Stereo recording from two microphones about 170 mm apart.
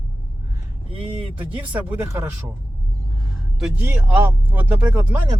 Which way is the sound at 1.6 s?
10° right (ahead or behind).